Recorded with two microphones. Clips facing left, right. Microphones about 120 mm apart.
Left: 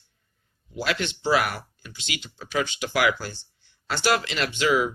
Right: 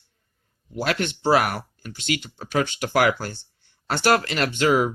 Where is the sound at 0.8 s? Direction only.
50° right (ahead or behind).